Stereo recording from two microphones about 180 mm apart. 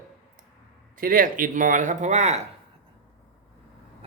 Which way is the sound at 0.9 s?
50° right (ahead or behind).